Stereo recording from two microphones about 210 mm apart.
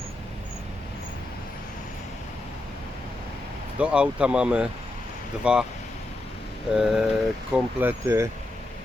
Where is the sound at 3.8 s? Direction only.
5° right (ahead or behind).